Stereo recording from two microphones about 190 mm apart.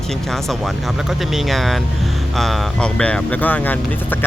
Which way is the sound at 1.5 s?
Centre (ahead or behind).